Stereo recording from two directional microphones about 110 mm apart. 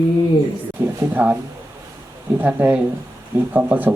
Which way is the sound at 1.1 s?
15° right (ahead or behind).